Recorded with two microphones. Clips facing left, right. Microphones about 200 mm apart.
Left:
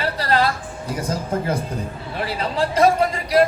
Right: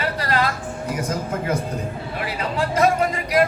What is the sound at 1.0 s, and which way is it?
Speech, 35° left (ahead or behind).